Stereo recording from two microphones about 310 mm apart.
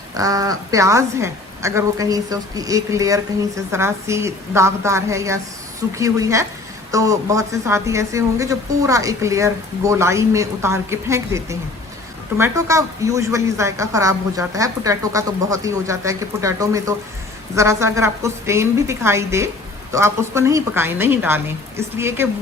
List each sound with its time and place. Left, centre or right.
0.2 s a woman's voice: centre